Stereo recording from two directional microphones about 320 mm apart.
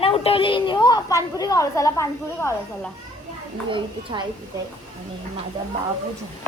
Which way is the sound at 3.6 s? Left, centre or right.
Centre.